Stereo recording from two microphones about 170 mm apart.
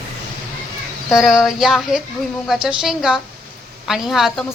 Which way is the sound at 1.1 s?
Centre (ahead or behind).